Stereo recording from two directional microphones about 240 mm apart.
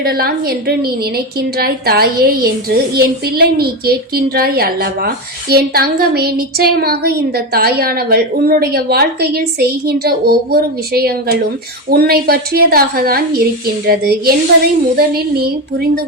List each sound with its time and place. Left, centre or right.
0.0 s a woman's voice: right